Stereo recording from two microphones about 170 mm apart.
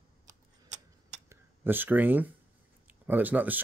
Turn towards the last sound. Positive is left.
turn(degrees=-10)  # may be behind; listen again after turning